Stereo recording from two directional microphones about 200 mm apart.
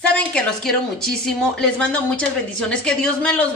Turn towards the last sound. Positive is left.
turn(degrees=5)  # may be behind; listen again after turning